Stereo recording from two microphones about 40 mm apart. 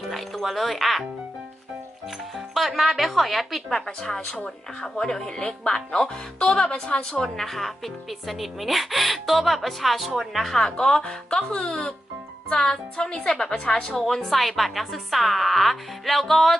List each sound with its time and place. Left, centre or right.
0.1 s music: centre
2.5 s a woman's voice: centre
3.7 s speech: centre
7.3 s speech: centre
10.5 s speech: centre
14.0 s speech: centre